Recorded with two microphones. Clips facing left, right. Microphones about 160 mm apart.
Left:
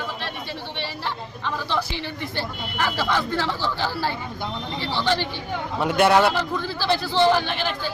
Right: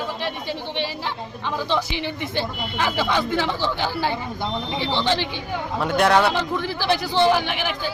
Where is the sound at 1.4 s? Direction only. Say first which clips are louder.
Right 2 dB; 15° right (ahead or behind).